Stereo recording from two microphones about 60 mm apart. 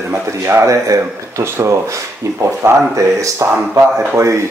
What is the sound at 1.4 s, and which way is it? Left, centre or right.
Speech, right.